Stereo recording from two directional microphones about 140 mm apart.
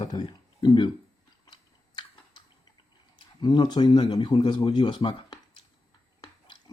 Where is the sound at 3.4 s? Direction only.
30° left (ahead or behind).